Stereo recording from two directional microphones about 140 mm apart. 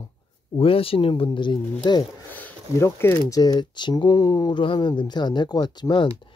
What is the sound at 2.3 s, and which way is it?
Speech, 10° left (ahead or behind).